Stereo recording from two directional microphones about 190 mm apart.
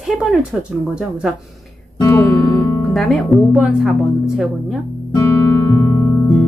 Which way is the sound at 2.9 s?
Centre (ahead or behind).